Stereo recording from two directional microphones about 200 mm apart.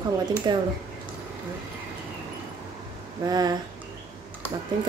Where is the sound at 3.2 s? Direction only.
20° right (ahead or behind).